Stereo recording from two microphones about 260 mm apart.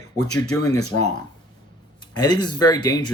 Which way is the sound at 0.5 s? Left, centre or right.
Left.